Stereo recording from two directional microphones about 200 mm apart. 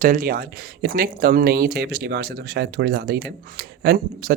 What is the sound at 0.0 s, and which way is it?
Speech, 45° right (ahead or behind).